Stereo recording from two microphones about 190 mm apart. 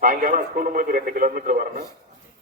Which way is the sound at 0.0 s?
45° right (ahead or behind).